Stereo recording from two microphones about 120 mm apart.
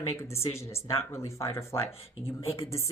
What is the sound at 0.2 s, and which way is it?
Speech, 25° left (ahead or behind).